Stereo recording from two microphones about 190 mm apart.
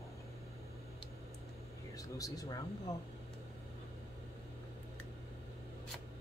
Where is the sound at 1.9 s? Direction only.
20° left (ahead or behind).